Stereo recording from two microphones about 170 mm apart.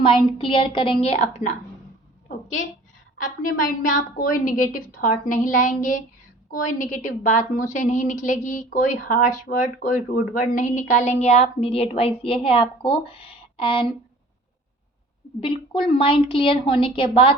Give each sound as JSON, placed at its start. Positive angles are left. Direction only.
{"t": 0.0, "sound": "a woman's voice", "side_deg": 30}
{"t": 2.2, "sound": "a sound", "side_deg": 45}
{"t": 3.2, "sound": "a woman's voice", "side_deg": 55}
{"t": 15.4, "sound": "a woman's voice", "side_deg": 30}